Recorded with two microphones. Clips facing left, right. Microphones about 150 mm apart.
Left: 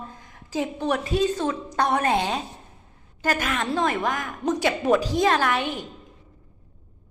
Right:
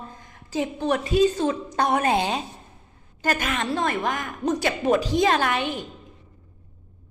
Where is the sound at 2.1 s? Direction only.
30° right (ahead or behind).